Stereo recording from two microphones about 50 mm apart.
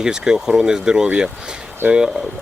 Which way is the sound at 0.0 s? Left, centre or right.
Centre.